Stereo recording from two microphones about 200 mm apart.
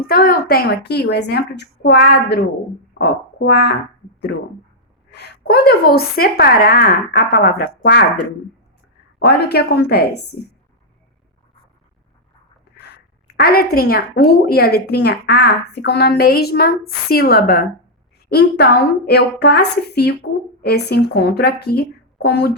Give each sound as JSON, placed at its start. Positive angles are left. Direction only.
{"t": 0.1, "sound": "a woman's voice", "side_deg": 50}
{"t": 4.3, "sound": "a sound", "side_deg": 55}
{"t": 5.1, "sound": "a woman's voice", "side_deg": 55}
{"t": 13.3, "sound": "a woman's voice", "side_deg": 50}